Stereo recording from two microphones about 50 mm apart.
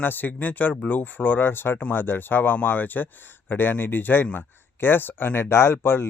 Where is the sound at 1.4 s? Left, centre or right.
Left.